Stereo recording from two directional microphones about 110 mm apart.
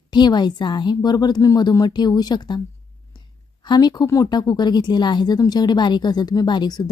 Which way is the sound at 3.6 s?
40° left (ahead or behind).